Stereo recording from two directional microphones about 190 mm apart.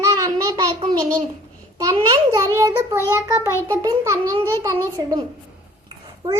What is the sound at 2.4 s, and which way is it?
A child's voice, 15° right (ahead or behind).